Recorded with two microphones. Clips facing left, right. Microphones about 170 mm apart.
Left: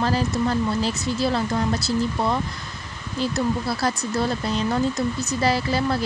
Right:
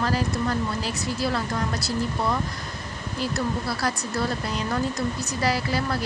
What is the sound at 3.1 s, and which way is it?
Speech, 25° left (ahead or behind).